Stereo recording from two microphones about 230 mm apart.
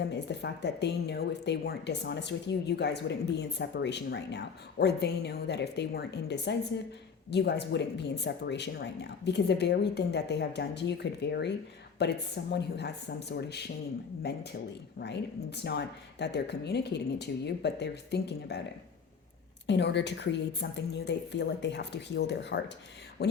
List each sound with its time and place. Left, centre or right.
0.3 s speech: left
19.6 s speech: left